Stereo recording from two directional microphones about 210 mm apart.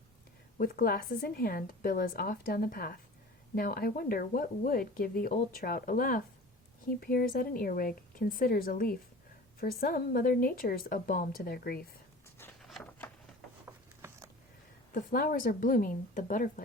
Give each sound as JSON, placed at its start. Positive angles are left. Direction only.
{"t": 0.6, "sound": "speech", "side_deg": 45}
{"t": 12.6, "sound": "a sound", "side_deg": 0}
{"t": 14.9, "sound": "speech", "side_deg": 40}